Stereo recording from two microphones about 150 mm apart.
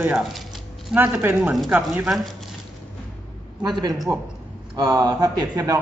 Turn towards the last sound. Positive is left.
turn(degrees=-25)  # may be behind; listen again after turning